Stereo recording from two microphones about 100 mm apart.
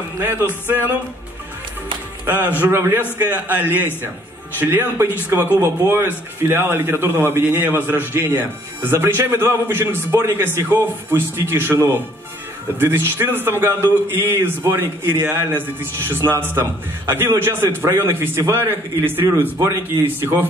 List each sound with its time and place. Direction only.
0.2 s speech: 20° right (ahead or behind)
2.2 s speech: 20° right (ahead or behind)
20.2 s speech: 20° right (ahead or behind)